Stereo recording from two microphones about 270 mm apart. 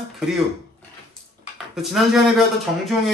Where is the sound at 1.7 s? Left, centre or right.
Centre.